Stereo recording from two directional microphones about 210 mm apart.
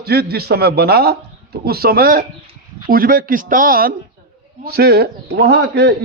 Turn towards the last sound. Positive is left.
turn(degrees=-50)  # may be behind; listen again after turning